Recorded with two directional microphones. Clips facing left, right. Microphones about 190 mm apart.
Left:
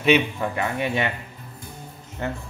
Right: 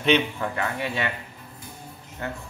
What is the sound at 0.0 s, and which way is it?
A man's voice, 10° left (ahead or behind).